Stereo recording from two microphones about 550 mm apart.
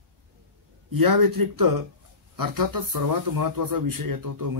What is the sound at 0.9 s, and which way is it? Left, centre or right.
Speech, right.